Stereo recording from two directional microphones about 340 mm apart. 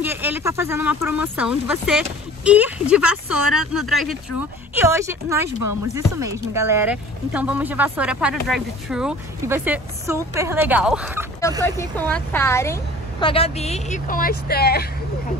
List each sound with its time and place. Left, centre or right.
0.0 s speech: centre
11.6 s a woman's voice: centre; by 14.9 s left